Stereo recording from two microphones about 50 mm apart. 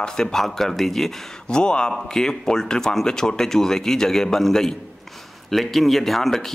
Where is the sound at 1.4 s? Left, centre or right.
Centre.